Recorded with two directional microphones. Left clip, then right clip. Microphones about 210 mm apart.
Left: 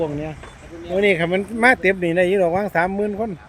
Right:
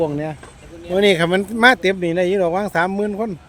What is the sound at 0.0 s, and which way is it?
Speech, 30° right (ahead or behind).